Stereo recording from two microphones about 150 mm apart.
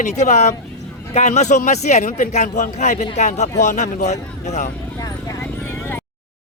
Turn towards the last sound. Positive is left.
turn(degrees=15)  # may be behind; listen again after turning